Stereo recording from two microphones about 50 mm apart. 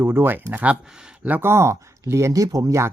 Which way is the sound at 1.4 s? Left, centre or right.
Right.